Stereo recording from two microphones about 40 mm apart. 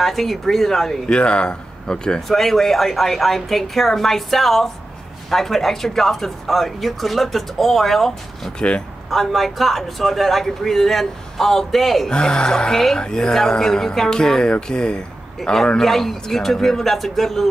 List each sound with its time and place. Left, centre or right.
0.0 s a man's voice: centre
1.0 s speech: left
2.2 s a woman's voice: centre
8.5 s speech: left
9.1 s a man's voice: centre
12.1 s a woman's voice: centre
15.8 s a woman's voice: centre